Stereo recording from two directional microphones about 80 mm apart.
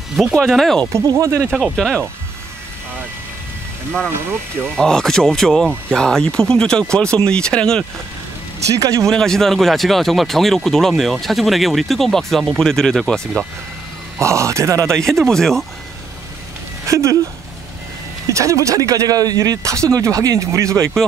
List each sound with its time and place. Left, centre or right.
0.1 s speech: centre
1.2 s speech: right
1.5 s speech: centre
4.7 s speech: centre
8.6 s speech: right
9.0 s speech: centre
14.2 s speech: right
14.9 s speech: centre
16.8 s speech: right
18.3 s speech: right